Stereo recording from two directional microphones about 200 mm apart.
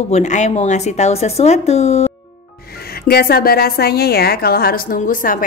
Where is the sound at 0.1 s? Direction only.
35° left (ahead or behind).